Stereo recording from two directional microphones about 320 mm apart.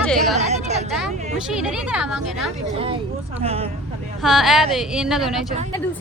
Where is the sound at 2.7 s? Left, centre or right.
Centre.